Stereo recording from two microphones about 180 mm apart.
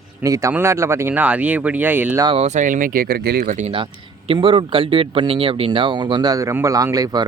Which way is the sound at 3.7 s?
30° right (ahead or behind).